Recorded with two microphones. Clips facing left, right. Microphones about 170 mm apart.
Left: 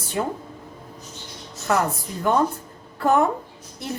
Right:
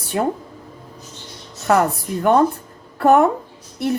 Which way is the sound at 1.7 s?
60° right (ahead or behind).